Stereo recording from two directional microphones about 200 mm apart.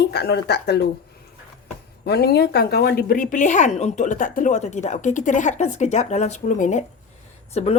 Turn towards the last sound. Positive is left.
turn(degrees=30)  # may be behind; listen again after turning